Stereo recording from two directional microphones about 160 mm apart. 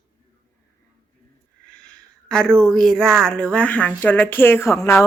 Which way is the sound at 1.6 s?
5° left (ahead or behind).